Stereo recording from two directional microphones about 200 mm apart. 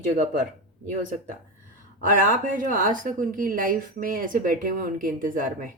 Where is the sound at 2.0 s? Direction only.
40° right (ahead or behind).